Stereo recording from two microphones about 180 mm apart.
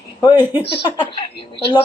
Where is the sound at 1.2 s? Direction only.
25° left (ahead or behind).